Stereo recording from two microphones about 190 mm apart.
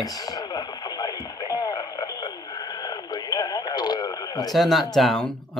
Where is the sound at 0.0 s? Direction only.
20° left (ahead or behind).